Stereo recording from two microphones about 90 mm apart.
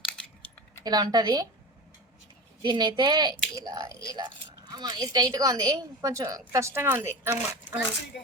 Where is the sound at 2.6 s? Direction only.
60° right (ahead or behind); by 7.7 s 30° right (ahead or behind).